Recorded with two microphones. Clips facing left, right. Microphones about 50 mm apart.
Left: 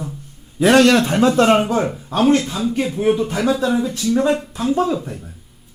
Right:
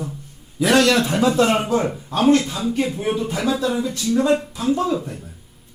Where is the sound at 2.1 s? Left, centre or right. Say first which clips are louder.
Left 1 dB; centre.